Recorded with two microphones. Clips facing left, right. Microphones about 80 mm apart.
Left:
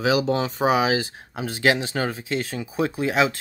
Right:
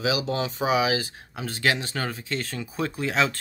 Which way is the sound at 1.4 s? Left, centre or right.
Centre.